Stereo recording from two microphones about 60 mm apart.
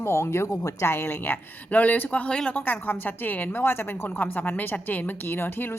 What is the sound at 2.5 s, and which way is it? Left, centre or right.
A woman's voice, left.